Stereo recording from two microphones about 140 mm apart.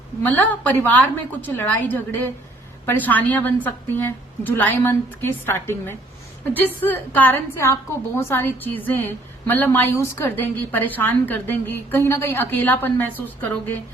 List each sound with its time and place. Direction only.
0.2 s a woman's voice: 10° left (ahead or behind)